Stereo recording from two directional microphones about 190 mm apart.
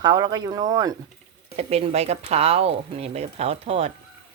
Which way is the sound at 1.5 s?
30° right (ahead or behind).